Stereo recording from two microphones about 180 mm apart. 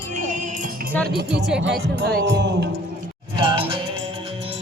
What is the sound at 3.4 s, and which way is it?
Music, 30° right (ahead or behind).